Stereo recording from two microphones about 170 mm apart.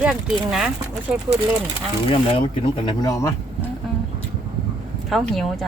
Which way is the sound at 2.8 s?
20° left (ahead or behind).